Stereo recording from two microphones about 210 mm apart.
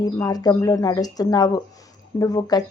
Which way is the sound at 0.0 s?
20° left (ahead or behind).